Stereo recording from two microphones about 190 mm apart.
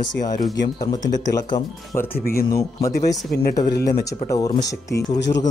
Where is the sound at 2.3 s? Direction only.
50° left (ahead or behind).